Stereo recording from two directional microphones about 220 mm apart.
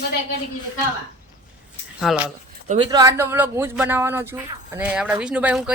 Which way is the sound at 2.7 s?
25° right (ahead or behind).